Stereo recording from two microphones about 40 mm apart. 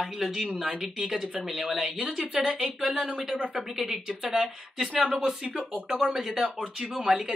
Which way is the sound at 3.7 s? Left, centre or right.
Centre.